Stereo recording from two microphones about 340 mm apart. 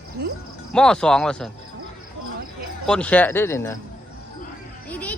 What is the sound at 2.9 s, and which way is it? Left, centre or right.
Speech, centre.